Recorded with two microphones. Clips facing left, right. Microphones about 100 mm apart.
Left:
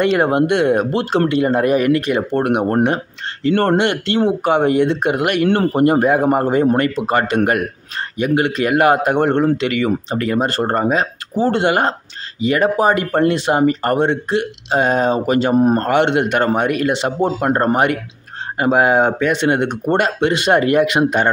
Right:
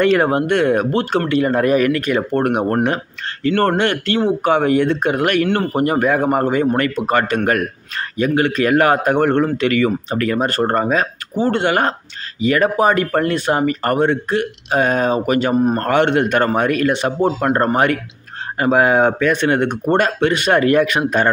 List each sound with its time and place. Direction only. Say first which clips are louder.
0.0 s speech: even; 20° left (ahead or behind)